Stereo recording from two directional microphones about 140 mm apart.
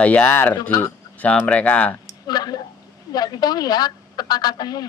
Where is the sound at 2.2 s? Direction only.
30° left (ahead or behind).